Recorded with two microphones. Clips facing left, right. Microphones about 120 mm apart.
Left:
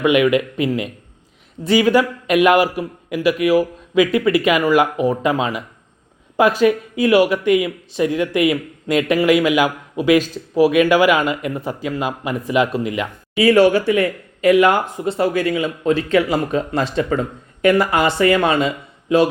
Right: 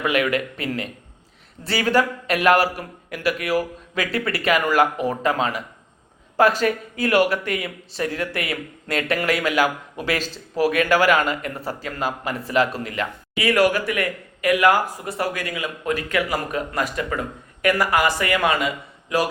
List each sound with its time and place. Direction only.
0.0 s a man's voice: 15° left (ahead or behind)
13.3 s speech: 30° left (ahead or behind)